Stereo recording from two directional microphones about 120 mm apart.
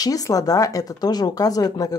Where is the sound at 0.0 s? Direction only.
30° left (ahead or behind).